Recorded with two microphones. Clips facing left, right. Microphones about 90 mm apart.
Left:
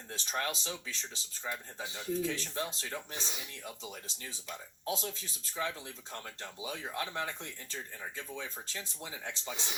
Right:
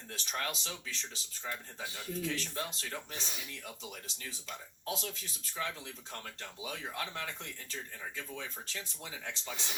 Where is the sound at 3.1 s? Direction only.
20° left (ahead or behind).